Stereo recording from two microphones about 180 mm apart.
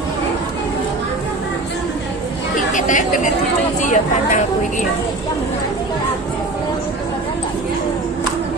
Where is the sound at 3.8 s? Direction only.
45° left (ahead or behind).